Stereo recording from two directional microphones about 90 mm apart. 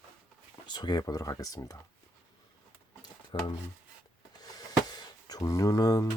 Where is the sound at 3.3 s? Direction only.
65° left (ahead or behind).